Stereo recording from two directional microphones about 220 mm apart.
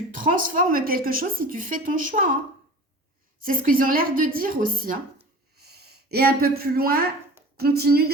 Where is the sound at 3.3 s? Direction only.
40° right (ahead or behind).